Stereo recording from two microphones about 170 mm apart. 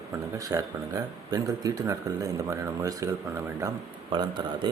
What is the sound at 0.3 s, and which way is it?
Speech, 20° right (ahead or behind).